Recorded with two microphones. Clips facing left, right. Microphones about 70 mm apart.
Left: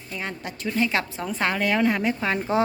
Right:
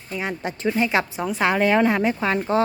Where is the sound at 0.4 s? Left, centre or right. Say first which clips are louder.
Right 3 dB; right.